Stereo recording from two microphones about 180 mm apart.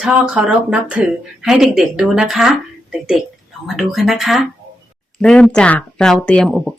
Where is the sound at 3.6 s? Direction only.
Centre (ahead or behind).